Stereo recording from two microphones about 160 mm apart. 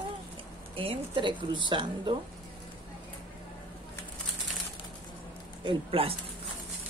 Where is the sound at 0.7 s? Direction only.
35° right (ahead or behind).